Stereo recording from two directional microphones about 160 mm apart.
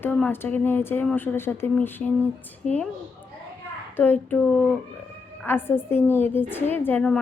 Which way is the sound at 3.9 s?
10° left (ahead or behind).